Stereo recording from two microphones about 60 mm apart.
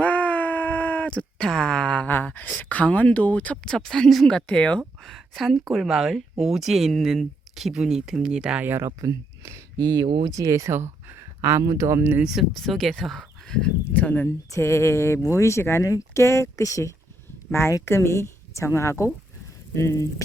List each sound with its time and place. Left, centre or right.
0.0 s wail: left
1.5 s speech: centre
3.6 s speech: centre
4.4 s speech: centre
5.0 s speech: centre
8.6 s speech: right
9.0 s speech: right
10.7 s a sound: right
11.6 s speech: right
12.4 s speech: centre
13.9 s speech: left
14.3 s a woman's voice: left
17.5 s a woman's voice: left